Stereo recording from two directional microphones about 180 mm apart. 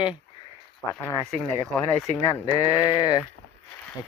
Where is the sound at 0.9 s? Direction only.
15° left (ahead or behind).